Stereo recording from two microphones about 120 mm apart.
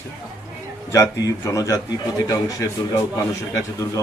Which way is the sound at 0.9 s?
25° left (ahead or behind).